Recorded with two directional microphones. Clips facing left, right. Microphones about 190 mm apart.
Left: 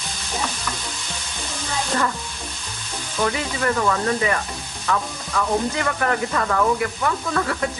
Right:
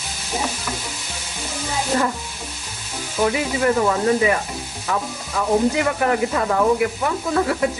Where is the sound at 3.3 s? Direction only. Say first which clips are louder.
Right 5 dB; 15° right (ahead or behind).